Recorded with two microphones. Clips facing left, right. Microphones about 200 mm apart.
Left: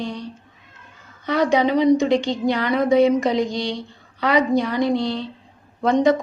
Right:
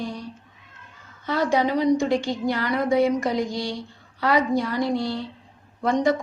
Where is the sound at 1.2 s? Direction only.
20° left (ahead or behind).